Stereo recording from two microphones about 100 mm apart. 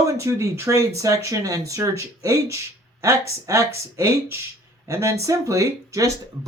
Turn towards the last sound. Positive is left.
turn(degrees=-30)  # may be behind; listen again after turning